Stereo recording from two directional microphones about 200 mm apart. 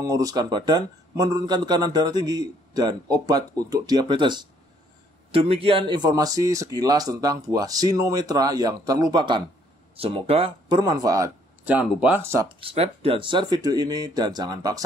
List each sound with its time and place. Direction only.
0.0 s speech: 15° right (ahead or behind)